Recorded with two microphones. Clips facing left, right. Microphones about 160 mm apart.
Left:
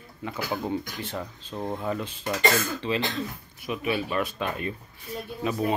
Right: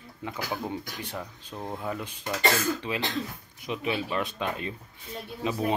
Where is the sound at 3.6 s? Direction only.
20° right (ahead or behind).